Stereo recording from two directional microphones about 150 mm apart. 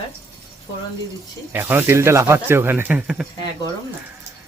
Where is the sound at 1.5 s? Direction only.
15° right (ahead or behind).